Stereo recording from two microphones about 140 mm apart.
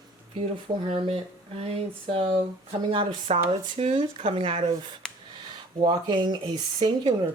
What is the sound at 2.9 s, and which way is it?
Speech, 40° right (ahead or behind).